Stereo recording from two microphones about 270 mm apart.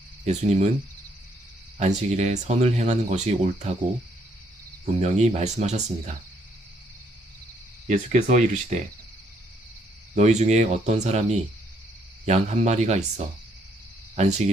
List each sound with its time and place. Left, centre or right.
0.3 s speech: right
1.8 s speech: right
4.9 s speech: right
7.9 s speech: right
10.2 s speech: right